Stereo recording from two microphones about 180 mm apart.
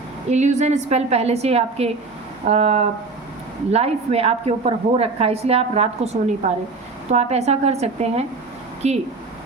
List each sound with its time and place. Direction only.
0.3 s a woman's voice: 40° right (ahead or behind)